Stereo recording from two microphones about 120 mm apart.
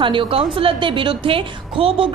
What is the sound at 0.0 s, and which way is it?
A woman's voice, 45° right (ahead or behind).